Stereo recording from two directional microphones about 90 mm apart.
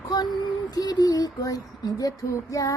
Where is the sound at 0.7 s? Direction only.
45° left (ahead or behind).